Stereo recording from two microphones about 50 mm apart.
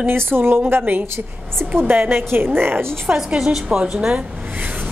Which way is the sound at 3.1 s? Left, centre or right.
Centre.